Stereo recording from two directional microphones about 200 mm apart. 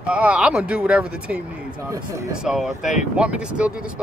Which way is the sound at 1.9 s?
15° right (ahead or behind).